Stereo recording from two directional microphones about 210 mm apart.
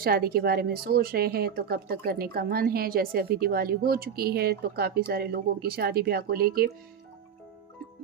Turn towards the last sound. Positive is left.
turn(degrees=-45)  # may be behind; listen again after turning